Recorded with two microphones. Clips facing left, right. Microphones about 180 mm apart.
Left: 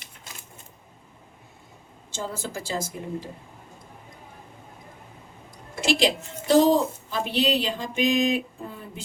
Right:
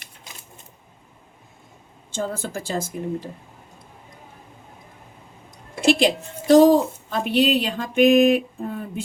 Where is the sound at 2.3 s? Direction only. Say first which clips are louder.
Right 4 dB; 55° right (ahead or behind).